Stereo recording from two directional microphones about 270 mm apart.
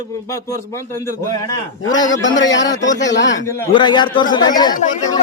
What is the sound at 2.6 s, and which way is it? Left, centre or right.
Speech, centre.